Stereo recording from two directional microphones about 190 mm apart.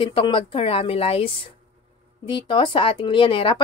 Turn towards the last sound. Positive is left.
turn(degrees=25)  # may be behind; listen again after turning